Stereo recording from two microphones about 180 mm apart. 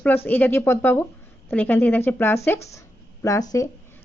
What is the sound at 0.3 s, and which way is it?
Speech, 10° left (ahead or behind).